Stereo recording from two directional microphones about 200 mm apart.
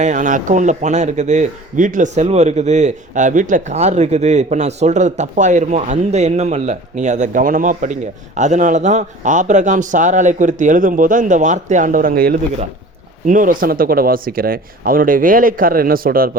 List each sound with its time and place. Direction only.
0.0 s a man's voice: 40° right (ahead or behind)